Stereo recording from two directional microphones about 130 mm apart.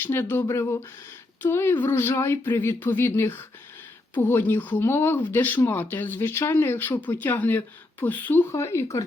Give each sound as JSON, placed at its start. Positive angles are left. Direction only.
{"t": 0.0, "sound": "speech", "side_deg": 15}